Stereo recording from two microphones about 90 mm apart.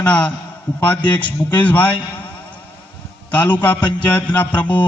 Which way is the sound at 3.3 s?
20° left (ahead or behind).